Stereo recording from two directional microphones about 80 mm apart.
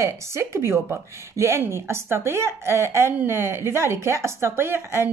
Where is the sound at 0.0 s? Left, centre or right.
Right.